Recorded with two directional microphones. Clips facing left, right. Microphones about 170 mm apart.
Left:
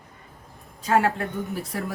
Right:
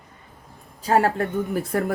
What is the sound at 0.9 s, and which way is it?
Speech, 35° right (ahead or behind).